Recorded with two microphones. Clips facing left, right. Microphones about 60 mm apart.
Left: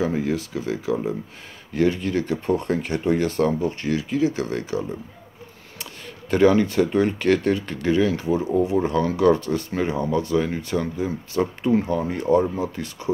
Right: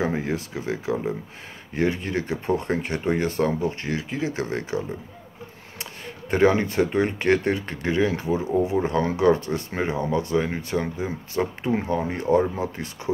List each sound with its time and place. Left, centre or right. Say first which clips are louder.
0.0 s speech: left 2 dB; right
5.8 s speech: right 1 dB; right